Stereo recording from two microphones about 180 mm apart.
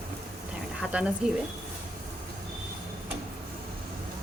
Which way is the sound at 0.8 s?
5° right (ahead or behind).